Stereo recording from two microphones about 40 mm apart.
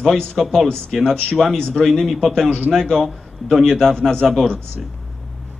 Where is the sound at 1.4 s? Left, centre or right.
Centre.